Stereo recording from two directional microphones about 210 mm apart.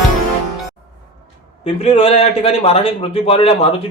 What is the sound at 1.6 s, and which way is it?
A man's voice, 30° left (ahead or behind).